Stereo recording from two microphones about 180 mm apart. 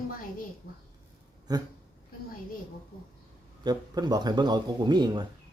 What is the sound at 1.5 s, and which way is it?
Speech, 20° right (ahead or behind).